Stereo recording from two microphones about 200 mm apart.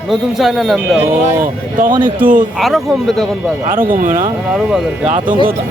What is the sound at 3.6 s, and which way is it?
Speech, 45° right (ahead or behind).